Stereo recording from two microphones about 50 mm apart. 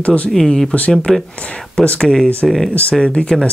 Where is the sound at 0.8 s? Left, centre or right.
Left.